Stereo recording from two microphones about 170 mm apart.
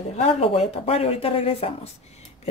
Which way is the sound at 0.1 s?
35° left (ahead or behind).